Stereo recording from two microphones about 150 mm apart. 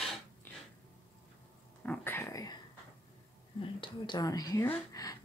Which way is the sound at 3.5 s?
35° left (ahead or behind).